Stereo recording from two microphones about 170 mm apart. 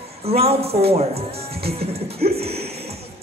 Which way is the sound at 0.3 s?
35° right (ahead or behind).